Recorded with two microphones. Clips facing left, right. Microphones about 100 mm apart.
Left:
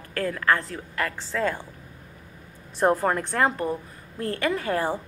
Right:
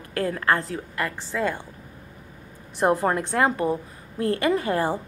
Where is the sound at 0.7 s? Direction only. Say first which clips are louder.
Right 1 dB; 10° right (ahead or behind).